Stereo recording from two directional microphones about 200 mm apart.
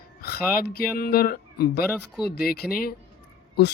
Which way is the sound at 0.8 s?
50° left (ahead or behind).